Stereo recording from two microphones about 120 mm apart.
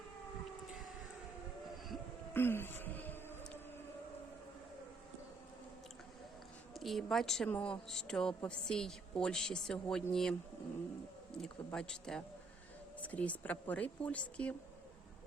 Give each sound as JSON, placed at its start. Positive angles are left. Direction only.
{"t": 2.3, "sound": "music", "side_deg": 20}
{"t": 6.7, "sound": "a woman's voice", "side_deg": 0}
{"t": 11.3, "sound": "a woman's voice", "side_deg": 5}